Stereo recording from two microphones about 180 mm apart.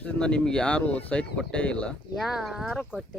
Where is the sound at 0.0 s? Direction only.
5° left (ahead or behind).